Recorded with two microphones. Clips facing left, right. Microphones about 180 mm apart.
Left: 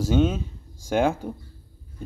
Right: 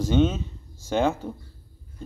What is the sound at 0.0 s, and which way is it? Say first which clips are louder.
A man's voice: even; 5° left (ahead or behind).